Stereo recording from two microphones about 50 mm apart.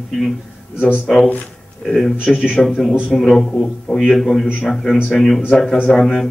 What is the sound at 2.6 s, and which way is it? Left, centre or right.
Speech, centre.